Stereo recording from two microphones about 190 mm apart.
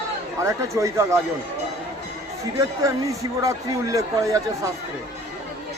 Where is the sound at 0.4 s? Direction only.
15° right (ahead or behind).